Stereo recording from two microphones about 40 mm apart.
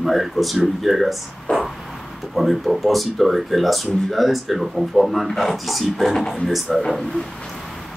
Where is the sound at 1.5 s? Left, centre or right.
Left.